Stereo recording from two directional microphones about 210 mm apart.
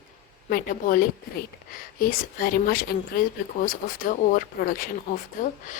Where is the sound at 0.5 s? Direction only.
40° left (ahead or behind).